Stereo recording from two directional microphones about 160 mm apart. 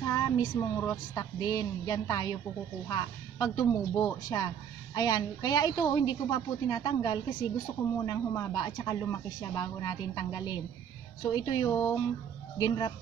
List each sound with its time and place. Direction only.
0.0 s a woman's voice: 20° left (ahead or behind)